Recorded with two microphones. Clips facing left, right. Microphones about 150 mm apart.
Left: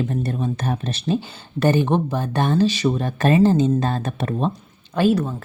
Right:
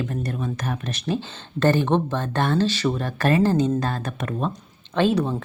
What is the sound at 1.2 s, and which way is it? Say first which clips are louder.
Speech: left 1 dB; 15° left (ahead or behind).